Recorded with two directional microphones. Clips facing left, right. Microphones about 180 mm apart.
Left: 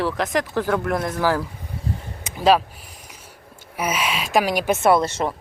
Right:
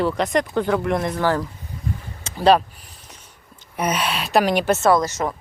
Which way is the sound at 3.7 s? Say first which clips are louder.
Right 1 dB; 5° left (ahead or behind).